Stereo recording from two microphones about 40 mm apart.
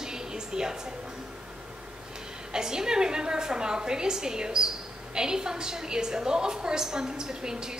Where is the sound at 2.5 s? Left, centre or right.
Centre.